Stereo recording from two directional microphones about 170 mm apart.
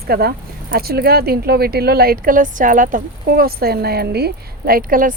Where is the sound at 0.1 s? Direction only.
65° right (ahead or behind).